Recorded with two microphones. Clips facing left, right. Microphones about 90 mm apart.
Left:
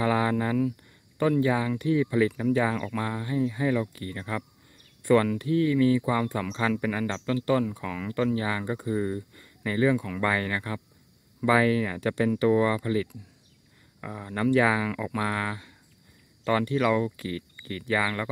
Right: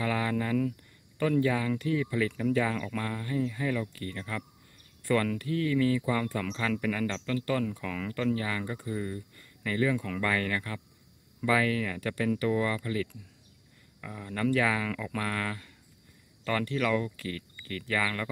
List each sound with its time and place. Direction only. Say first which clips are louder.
0.0 s a sound: left 5 dB; 25° left (ahead or behind)
1.4 s speech: left 3 dB; 20° left (ahead or behind)
9.9 s speech: left 3 dB; 10° left (ahead or behind)